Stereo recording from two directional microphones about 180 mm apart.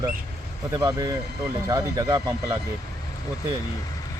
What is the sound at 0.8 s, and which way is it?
Speech, 15° right (ahead or behind).